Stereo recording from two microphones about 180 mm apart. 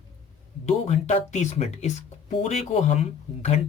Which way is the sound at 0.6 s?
40° left (ahead or behind).